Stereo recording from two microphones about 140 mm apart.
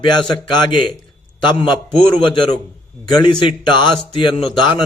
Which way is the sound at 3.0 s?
30° left (ahead or behind).